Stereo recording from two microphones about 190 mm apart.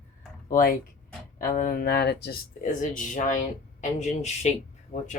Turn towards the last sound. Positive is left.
turn(degrees=50)  # may be behind; listen again after turning